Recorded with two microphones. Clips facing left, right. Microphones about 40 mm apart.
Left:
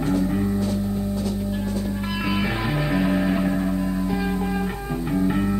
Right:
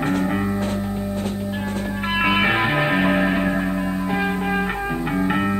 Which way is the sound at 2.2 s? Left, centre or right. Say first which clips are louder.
Right 7 dB; right.